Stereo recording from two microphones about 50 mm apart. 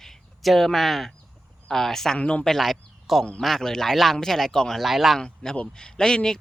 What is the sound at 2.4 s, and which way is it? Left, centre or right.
Speech, centre.